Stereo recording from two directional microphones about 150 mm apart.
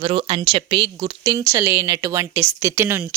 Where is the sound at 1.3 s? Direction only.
20° right (ahead or behind).